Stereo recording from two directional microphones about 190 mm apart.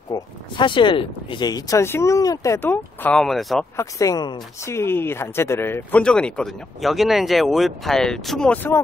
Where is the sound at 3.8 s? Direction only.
15° left (ahead or behind).